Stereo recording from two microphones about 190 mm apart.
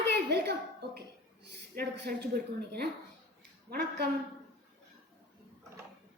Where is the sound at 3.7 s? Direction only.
55° right (ahead or behind).